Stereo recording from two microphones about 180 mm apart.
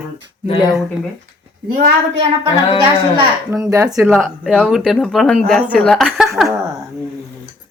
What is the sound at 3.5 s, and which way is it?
Speech, 15° right (ahead or behind).